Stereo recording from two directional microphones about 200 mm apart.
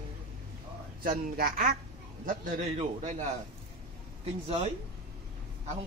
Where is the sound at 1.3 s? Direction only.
45° right (ahead or behind).